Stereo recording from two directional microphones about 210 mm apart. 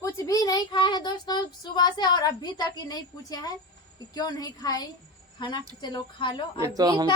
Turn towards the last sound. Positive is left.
turn(degrees=-15)  # may be behind; listen again after turning